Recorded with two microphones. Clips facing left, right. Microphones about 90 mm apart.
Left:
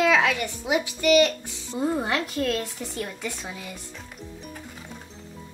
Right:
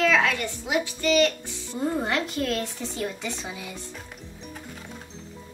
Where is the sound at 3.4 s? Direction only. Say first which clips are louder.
Right 1 dB; 5° right (ahead or behind).